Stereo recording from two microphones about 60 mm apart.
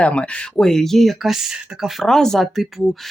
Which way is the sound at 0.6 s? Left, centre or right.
Centre.